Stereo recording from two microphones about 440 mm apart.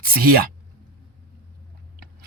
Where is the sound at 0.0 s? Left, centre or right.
Centre.